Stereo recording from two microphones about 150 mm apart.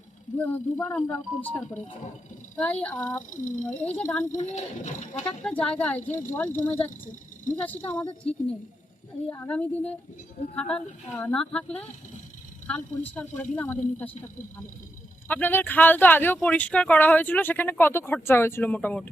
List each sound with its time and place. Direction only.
0.3 s speech: 10° left (ahead or behind)
3.2 s speech: 60° left (ahead or behind)
3.7 s speech: 10° left (ahead or behind)
4.4 s speech: 55° left (ahead or behind)
5.4 s speech: 5° left (ahead or behind)
6.0 s speech: 55° left (ahead or behind)
6.3 s speech: 10° left (ahead or behind)
7.0 s speech: 60° left (ahead or behind)
7.5 s speech: 10° left (ahead or behind)
15.3 s speech: 10° left (ahead or behind)